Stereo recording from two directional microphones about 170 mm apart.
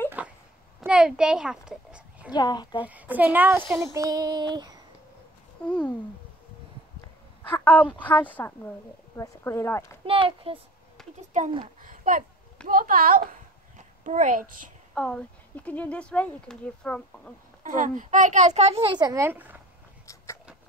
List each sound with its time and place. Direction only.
0.2 s a sound: 10° right (ahead or behind)
2.3 s a woman's voice: 25° left (ahead or behind)
2.8 s a child's voice: 10° right (ahead or behind)
3.8 s child singing: 20° right (ahead or behind)
5.7 s a woman's voice: 5° left (ahead or behind)
7.4 s a woman's voice: 10° left (ahead or behind)
10.0 s a child's voice: 35° right (ahead or behind)
11.0 s a sound: 5° left (ahead or behind)
11.8 s a sound: 55° right (ahead or behind)
12.6 s a child's voice: 55° right (ahead or behind)
15.0 s a woman's voice: 5° left (ahead or behind)
17.6 s a child's voice: 50° right (ahead or behind); by 19.5 s 10° right (ahead or behind)